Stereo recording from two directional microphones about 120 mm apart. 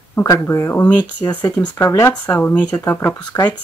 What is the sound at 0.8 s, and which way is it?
Speech, 15° left (ahead or behind).